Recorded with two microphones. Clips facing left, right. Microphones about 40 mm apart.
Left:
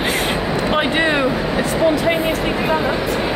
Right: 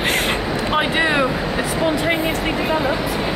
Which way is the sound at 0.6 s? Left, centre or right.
Centre.